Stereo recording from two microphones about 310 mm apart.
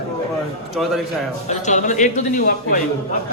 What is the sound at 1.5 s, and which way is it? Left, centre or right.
Speech, left.